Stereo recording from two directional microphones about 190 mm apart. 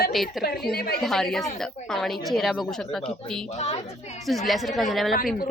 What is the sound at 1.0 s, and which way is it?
A woman's voice, centre (ahead or behind).